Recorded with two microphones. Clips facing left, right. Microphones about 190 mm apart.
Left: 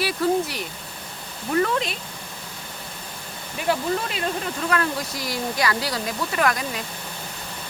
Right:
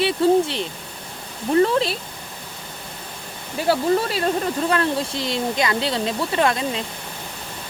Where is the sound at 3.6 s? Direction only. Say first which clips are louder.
Right 5 dB; 35° right (ahead or behind).